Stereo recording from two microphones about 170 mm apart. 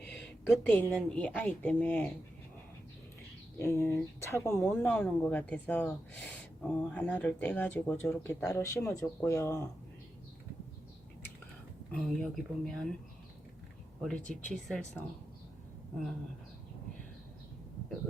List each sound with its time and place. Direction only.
0.1 s a woman's voice: 5° left (ahead or behind)
3.6 s speech: 15° left (ahead or behind)
11.9 s speech: 5° left (ahead or behind)
14.0 s speech: 5° left (ahead or behind)